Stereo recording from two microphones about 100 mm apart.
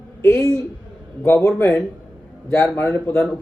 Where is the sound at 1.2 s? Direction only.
30° left (ahead or behind).